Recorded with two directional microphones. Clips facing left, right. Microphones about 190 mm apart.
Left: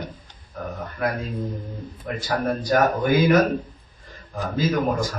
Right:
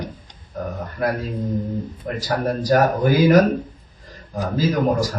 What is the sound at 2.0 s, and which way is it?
Speech, 40° right (ahead or behind).